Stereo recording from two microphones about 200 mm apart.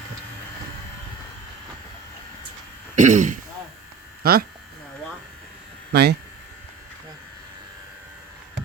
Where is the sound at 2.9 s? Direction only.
40° right (ahead or behind).